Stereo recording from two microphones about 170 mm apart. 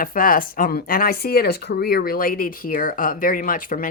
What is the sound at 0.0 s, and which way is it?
A woman's voice, 55° left (ahead or behind).